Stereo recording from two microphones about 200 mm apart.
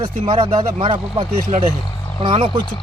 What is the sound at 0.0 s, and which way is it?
Speech, 25° right (ahead or behind).